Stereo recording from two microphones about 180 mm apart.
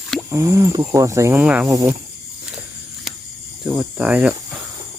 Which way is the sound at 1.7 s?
15° right (ahead or behind).